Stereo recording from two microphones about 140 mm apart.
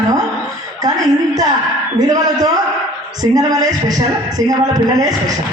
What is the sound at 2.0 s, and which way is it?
Speech, 30° right (ahead or behind).